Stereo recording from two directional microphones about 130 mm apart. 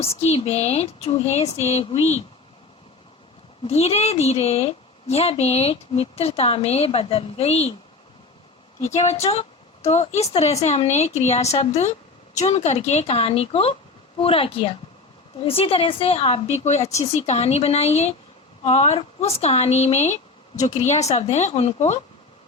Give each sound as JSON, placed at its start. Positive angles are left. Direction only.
{"t": 0.0, "sound": "a woman's voice", "side_deg": 50}
{"t": 3.6, "sound": "a woman's voice", "side_deg": 50}
{"t": 8.8, "sound": "a woman's voice", "side_deg": 60}